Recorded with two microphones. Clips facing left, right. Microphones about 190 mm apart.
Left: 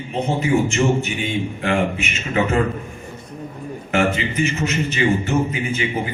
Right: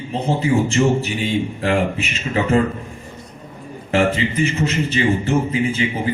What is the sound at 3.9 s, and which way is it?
A man's voice, 30° right (ahead or behind).